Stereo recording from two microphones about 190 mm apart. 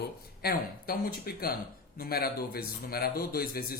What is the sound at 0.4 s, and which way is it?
A man's voice, 50° left (ahead or behind).